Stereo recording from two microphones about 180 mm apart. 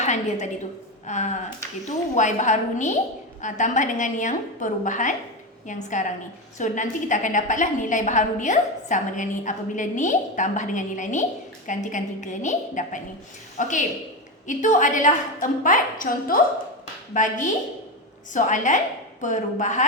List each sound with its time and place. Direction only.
0.0 s a woman's voice: 40° left (ahead or behind)